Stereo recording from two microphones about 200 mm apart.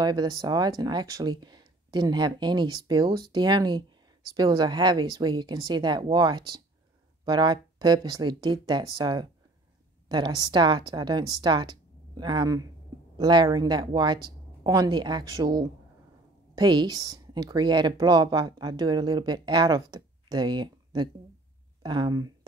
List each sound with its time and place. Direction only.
0.0 s speech: 20° right (ahead or behind)